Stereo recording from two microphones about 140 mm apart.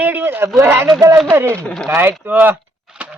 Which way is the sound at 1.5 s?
10° left (ahead or behind).